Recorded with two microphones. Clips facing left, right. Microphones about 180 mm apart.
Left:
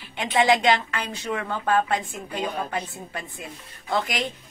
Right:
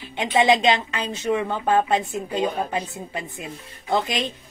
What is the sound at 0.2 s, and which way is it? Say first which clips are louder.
A woman's voice: right 2 dB; 20° right (ahead or behind).